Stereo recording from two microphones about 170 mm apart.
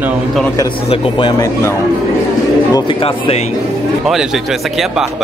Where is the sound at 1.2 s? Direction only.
20° left (ahead or behind).